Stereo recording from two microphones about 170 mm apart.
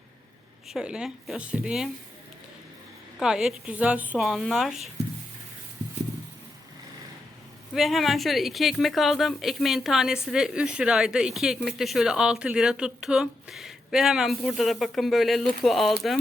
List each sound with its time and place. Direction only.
0.7 s speech: 5° right (ahead or behind)
3.2 s speech: 5° right (ahead or behind)
7.7 s speech: centre (ahead or behind)